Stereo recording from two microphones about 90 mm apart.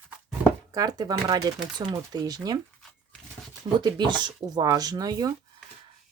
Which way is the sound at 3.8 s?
55° right (ahead or behind).